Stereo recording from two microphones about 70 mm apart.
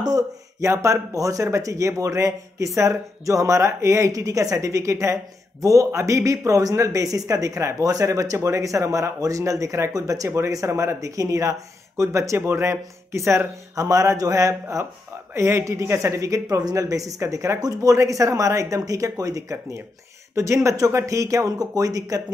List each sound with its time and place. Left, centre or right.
0.6 s speech: right
15.3 s speech: right
17.6 s speech: right
17.9 s speech: right
20.3 s speech: right